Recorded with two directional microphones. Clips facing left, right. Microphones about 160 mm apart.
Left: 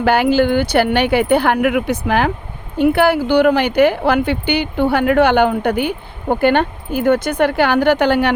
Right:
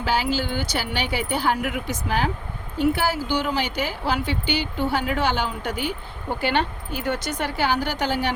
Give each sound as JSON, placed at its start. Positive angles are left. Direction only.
{"t": 0.0, "sound": "speech", "side_deg": 60}